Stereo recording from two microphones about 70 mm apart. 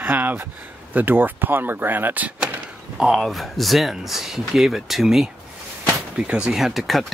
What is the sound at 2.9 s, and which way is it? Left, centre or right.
Speech, centre.